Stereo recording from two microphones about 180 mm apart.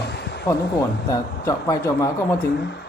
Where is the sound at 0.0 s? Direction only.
70° left (ahead or behind).